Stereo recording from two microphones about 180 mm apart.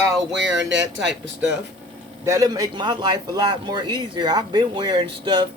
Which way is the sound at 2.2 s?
15° right (ahead or behind).